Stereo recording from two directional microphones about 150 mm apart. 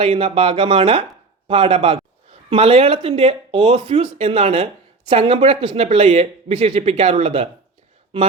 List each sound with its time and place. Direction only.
0.0 s speech: 40° right (ahead or behind)